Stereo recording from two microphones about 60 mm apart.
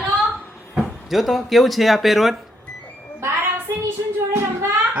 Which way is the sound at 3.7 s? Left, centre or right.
Right.